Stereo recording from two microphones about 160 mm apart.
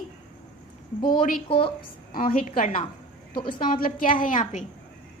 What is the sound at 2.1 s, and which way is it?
A woman's voice, 55° left (ahead or behind).